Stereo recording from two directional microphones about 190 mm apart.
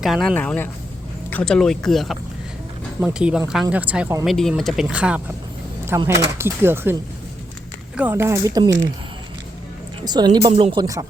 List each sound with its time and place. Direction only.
0.0 s speech: centre (ahead or behind)
7.9 s speech: 10° right (ahead or behind)
10.0 s a woman's voice: 20° right (ahead or behind)